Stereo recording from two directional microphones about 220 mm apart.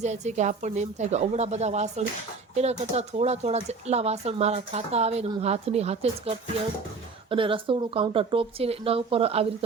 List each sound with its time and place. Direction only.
0.0 s a woman's voice: 30° right (ahead or behind)